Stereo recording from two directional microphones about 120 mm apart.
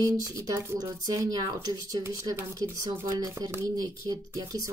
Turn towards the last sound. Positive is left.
turn(degrees=-30)  # may be behind; listen again after turning